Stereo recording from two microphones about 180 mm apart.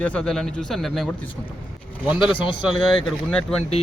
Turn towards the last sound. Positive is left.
turn(degrees=5)  # may be behind; listen again after turning